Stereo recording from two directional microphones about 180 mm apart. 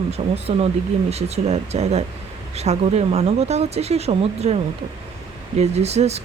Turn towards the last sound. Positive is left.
turn(degrees=-35)  # may be behind; listen again after turning